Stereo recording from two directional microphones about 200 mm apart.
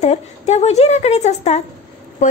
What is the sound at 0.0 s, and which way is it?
A woman's voice, 35° left (ahead or behind).